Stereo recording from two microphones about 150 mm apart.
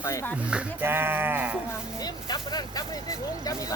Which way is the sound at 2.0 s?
25° left (ahead or behind).